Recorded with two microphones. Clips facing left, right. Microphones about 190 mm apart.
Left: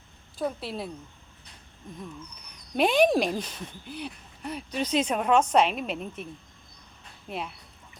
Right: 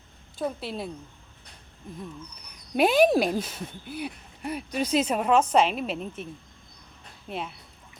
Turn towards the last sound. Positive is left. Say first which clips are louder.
# right 1 dB
turn(degrees=0)  # may be behind; listen again after turning